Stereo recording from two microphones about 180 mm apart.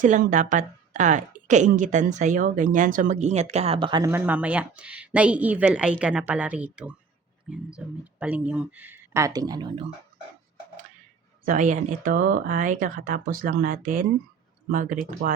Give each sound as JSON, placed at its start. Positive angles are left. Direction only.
{"t": 0.0, "sound": "a woman's voice", "side_deg": -45}
{"t": 4.1, "sound": "speech", "side_deg": -10}
{"t": 11.4, "sound": "a woman's voice", "side_deg": -45}